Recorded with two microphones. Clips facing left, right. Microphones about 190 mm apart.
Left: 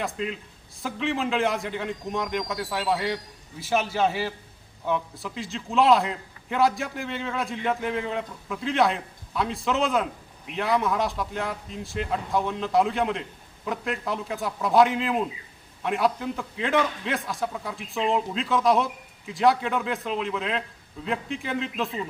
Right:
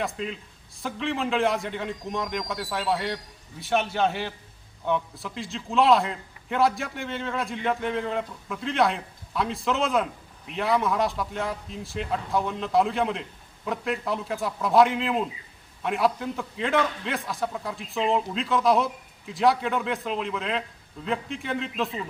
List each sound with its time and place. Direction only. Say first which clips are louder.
0.0 s a man's voice: left 1 dB; centre (ahead or behind)